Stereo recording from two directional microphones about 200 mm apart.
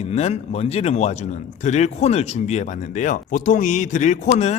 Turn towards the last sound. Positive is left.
turn(degrees=35)  # may be behind; listen again after turning